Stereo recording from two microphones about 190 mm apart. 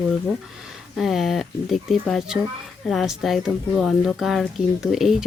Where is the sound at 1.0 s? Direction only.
Centre (ahead or behind).